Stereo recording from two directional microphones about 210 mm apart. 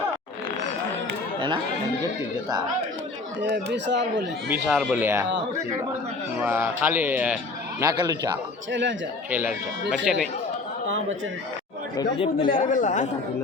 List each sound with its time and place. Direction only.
3.5 s speech: 55° right (ahead or behind)
4.6 s speech: 5° right (ahead or behind)
6.4 s speech: 10° right (ahead or behind)
8.7 s speech: 60° right (ahead or behind)
9.3 s speech: 5° right (ahead or behind)
12.4 s speech: 40° left (ahead or behind)